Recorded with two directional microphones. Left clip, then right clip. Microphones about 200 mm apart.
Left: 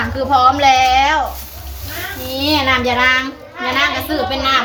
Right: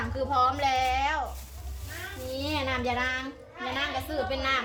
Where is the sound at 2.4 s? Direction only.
10° right (ahead or behind).